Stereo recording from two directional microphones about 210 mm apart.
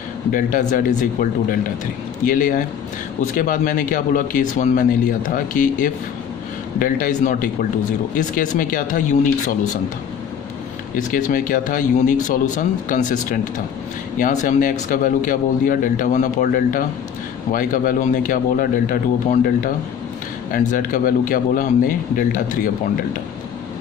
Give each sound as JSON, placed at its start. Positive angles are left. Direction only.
{"t": 0.3, "sound": "speech", "side_deg": 40}
{"t": 11.1, "sound": "speech", "side_deg": 40}
{"t": 20.5, "sound": "speech", "side_deg": 40}